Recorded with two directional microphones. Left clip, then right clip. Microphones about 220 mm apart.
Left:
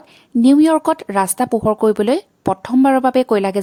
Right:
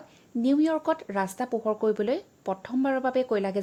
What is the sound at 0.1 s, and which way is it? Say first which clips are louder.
Speech: left 13 dB; 35° left (ahead or behind).